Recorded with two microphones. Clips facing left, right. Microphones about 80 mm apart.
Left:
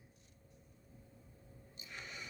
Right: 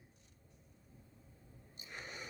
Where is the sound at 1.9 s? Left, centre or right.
Right.